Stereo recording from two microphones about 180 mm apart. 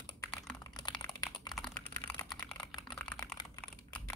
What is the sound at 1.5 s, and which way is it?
Typing, 5° left (ahead or behind).